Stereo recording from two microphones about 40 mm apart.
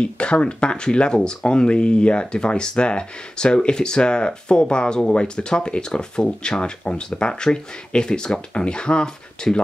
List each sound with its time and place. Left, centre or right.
0.0 s speech: left